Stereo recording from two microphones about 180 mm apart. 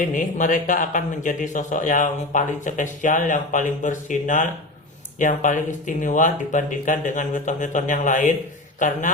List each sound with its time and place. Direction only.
0.0 s a man's voice: 45° left (ahead or behind)